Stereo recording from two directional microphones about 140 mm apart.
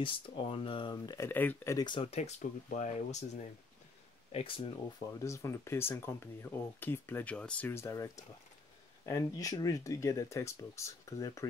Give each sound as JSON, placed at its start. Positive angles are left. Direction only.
{"t": 0.0, "sound": "speech", "side_deg": 40}
{"t": 1.9, "sound": "speech", "side_deg": 45}
{"t": 4.3, "sound": "speech", "side_deg": 40}
{"t": 5.0, "sound": "speech", "side_deg": 20}